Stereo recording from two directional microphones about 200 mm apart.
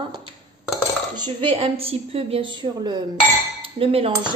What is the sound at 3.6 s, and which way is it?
Cutlery, 30° right (ahead or behind).